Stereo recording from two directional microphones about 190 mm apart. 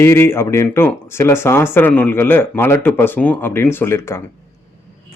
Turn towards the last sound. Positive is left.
turn(degrees=15)  # may be behind; listen again after turning